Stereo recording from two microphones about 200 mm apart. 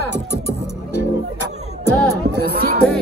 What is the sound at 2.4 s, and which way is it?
Music, 50° right (ahead or behind).